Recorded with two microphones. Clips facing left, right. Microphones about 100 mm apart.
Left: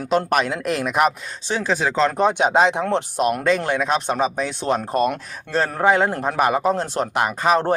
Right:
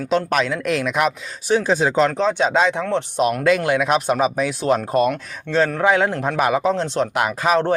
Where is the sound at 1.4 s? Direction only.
20° right (ahead or behind).